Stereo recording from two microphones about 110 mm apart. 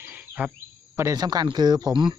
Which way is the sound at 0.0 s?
15° right (ahead or behind).